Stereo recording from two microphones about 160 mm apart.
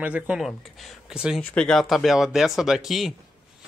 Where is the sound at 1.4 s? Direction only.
5° left (ahead or behind).